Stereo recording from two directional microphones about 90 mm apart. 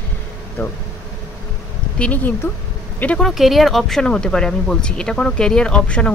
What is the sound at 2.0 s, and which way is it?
Speech, 20° left (ahead or behind).